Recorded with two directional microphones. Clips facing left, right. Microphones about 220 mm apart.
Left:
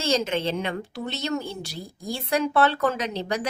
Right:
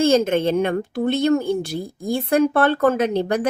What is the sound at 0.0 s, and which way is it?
Speech, 50° right (ahead or behind).